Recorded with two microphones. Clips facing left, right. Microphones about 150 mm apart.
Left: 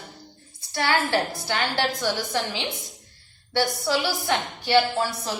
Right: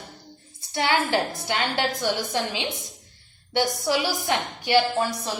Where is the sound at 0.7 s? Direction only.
20° right (ahead or behind).